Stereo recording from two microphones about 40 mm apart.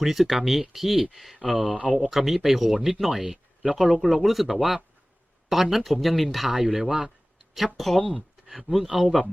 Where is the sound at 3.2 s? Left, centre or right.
Centre.